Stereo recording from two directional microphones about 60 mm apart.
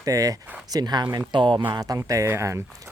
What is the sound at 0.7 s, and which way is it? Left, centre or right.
Speech, right.